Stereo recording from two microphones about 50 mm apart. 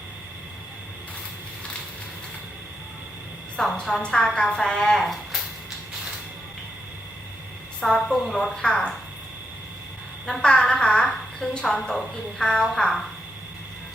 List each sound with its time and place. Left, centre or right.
3.6 s a woman's voice: centre
7.8 s a woman's voice: centre
10.2 s a woman's voice: centre